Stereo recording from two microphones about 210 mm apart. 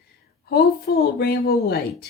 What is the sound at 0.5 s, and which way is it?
Speech, 50° left (ahead or behind).